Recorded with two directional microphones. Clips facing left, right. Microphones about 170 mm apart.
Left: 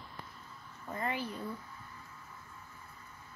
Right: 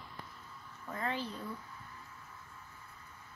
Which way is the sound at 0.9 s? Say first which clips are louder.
Left 1 dB; 10° left (ahead or behind).